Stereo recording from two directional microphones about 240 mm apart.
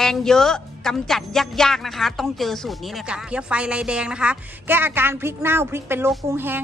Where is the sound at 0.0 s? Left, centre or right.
Centre.